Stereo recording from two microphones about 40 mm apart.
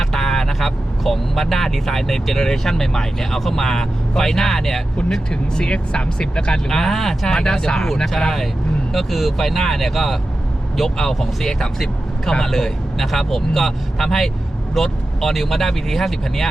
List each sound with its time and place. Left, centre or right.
0.0 s speech: centre
5.3 s speech: left
6.7 s speech: centre
7.3 s speech: centre
8.9 s speech: centre